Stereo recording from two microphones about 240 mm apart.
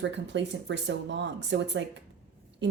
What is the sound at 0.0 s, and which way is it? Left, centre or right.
Speech, right.